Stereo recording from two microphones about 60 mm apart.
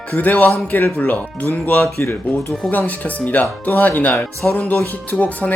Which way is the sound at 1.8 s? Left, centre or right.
Left.